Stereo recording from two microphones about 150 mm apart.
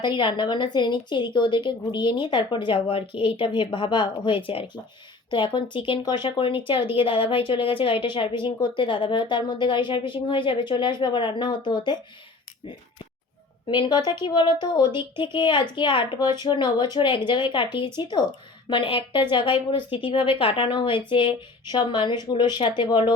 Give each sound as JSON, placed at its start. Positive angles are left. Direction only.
{"t": 0.0, "sound": "a woman's voice", "side_deg": 30}
{"t": 13.7, "sound": "a woman's voice", "side_deg": 30}